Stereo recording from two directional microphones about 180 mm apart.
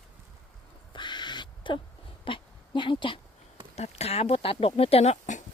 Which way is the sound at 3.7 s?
35° left (ahead or behind).